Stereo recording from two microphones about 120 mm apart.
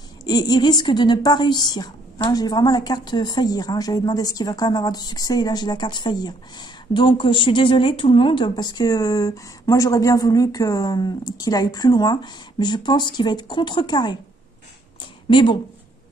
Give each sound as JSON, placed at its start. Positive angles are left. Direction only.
{"t": 0.2, "sound": "a woman's voice", "side_deg": 35}
{"t": 15.2, "sound": "speech", "side_deg": 45}